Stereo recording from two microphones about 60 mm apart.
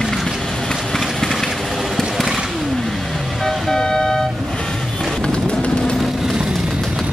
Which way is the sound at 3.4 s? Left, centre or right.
Centre.